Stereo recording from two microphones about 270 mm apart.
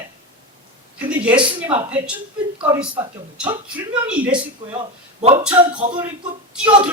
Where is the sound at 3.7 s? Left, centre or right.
Centre.